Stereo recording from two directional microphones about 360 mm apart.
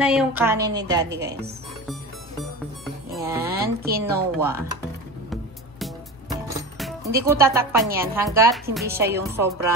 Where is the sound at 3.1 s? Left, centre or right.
Centre.